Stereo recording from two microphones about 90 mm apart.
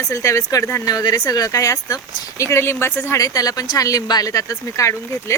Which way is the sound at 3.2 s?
40° left (ahead or behind).